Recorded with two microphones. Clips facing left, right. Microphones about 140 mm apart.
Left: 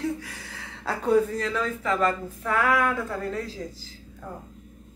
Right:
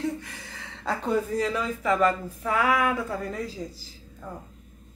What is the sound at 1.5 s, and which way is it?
Speech, 10° right (ahead or behind).